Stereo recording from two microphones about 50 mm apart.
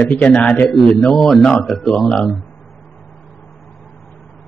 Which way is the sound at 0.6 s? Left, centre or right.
Centre.